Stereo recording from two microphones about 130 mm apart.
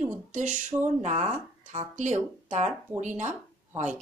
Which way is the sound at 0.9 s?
60° right (ahead or behind).